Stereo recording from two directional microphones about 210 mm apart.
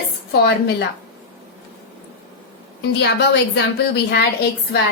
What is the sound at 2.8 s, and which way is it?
A woman's voice, 55° left (ahead or behind).